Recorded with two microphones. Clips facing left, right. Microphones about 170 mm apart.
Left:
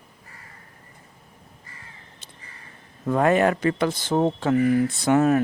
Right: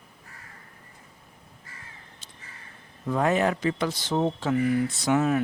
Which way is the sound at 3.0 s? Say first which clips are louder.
Left 4 dB; 55° left (ahead or behind).